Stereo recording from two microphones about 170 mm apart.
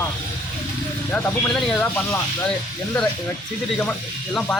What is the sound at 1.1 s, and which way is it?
Speech, 10° left (ahead or behind).